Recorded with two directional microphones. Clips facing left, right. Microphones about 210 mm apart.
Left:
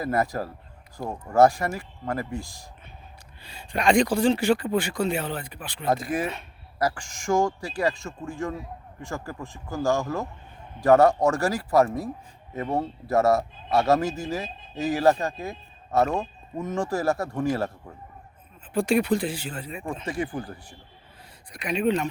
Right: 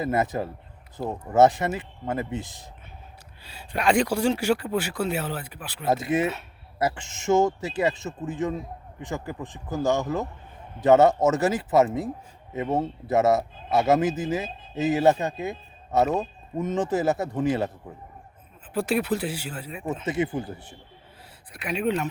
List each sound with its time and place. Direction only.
0.0 s a man's voice: 20° right (ahead or behind)
3.4 s speech: 5° right (ahead or behind)
6.0 s a man's voice: 25° right (ahead or behind)
16.6 s a man's voice: 20° right (ahead or behind)
18.7 s speech: 5° right (ahead or behind)
20.1 s a man's voice: 20° right (ahead or behind)
21.5 s speech: 5° right (ahead or behind)